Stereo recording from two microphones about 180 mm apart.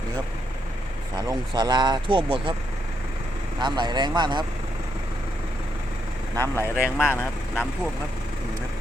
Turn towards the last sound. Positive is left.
turn(degrees=10)  # may be behind; listen again after turning